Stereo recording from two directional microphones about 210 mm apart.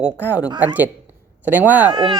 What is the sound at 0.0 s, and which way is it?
Speech, 5° right (ahead or behind).